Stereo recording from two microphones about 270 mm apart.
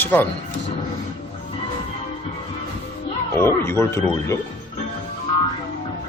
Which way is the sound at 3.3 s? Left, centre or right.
Centre.